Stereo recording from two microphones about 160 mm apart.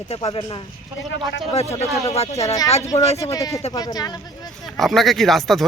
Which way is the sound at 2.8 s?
20° left (ahead or behind).